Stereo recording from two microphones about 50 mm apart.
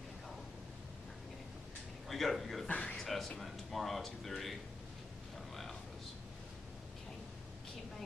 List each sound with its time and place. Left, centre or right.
2.0 s speech: centre
2.7 s a man's voice: left
3.0 s a sound: centre
3.3 s speech: centre